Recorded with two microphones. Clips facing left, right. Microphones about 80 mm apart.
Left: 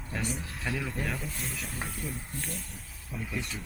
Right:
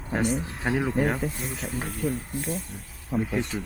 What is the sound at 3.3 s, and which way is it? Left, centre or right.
Speech, right.